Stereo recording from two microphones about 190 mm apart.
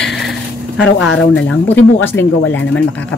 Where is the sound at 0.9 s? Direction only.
80° left.